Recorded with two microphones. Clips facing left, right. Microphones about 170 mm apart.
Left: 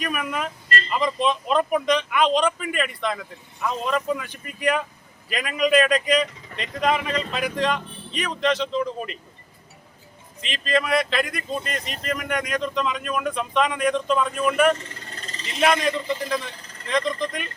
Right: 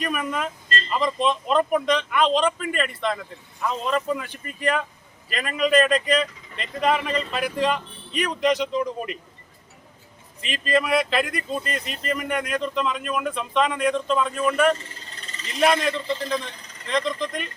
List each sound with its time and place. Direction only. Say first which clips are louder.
0.0 s speech: right 1 dB; 5° left (ahead or behind)
10.4 s speech: right 1 dB; 5° right (ahead or behind)
15.1 s a sound: left 3 dB; 45° left (ahead or behind)
15.5 s speech: even; centre (ahead or behind)